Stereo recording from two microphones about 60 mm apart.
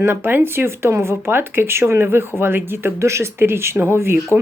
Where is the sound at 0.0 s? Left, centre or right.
Right.